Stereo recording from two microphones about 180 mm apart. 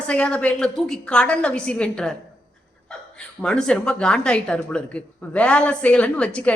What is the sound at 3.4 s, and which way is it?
A woman's voice, 5° left (ahead or behind).